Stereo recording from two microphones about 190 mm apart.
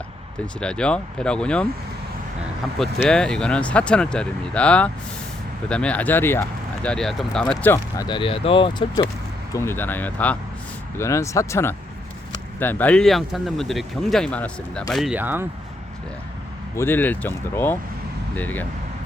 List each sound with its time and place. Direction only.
0.6 s speech: 5° left (ahead or behind)
2.7 s speech: 5° left (ahead or behind)
8.0 s speech: 25° left (ahead or behind)
9.5 s speech: 15° left (ahead or behind); by 15.4 s 10° right (ahead or behind)
16.7 s speech: 10° left (ahead or behind)